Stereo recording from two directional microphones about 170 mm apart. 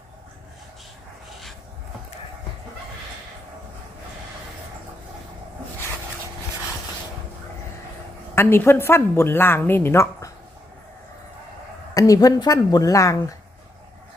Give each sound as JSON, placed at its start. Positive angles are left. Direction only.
{"t": 8.4, "sound": "speech", "side_deg": 15}
{"t": 11.9, "sound": "a woman's voice", "side_deg": 20}